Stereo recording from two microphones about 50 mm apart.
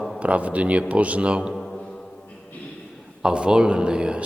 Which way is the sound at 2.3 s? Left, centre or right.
Left.